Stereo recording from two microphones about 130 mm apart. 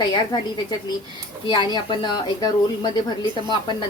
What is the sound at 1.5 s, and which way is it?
A woman's voice, 35° left (ahead or behind).